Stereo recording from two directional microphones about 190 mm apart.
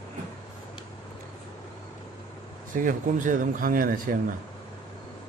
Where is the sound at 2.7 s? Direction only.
45° right (ahead or behind).